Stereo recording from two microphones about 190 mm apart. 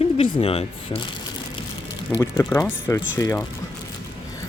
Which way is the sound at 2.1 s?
15° left (ahead or behind).